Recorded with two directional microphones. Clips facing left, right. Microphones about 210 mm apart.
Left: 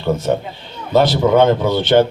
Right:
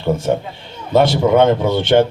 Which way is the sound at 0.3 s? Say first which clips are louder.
Even; 10° right (ahead or behind).